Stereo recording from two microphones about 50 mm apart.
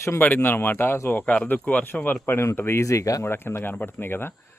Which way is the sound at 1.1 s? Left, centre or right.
Left.